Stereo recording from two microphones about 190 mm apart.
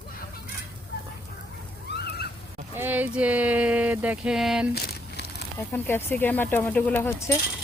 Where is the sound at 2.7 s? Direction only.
10° right (ahead or behind).